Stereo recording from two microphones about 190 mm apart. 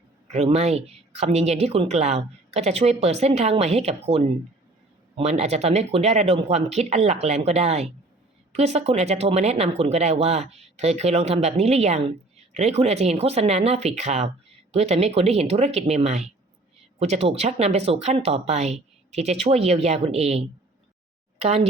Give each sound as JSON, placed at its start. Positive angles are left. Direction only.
{"t": 0.3, "sound": "speech", "side_deg": -35}
{"t": 21.4, "sound": "speech", "side_deg": -35}